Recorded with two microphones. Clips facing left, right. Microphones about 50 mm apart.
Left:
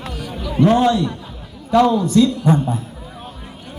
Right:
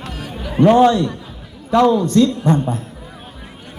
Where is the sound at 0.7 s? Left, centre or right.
Centre.